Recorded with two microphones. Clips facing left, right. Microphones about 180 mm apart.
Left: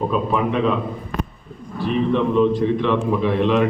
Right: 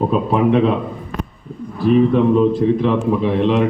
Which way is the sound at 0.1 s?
30° right (ahead or behind).